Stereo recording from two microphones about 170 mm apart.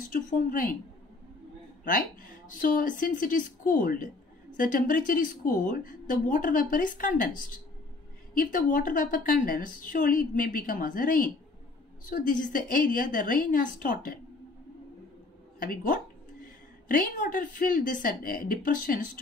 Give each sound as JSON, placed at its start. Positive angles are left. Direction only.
{"t": 0.1, "sound": "speech", "side_deg": 55}
{"t": 1.9, "sound": "speech", "side_deg": 55}
{"t": 15.6, "sound": "speech", "side_deg": 55}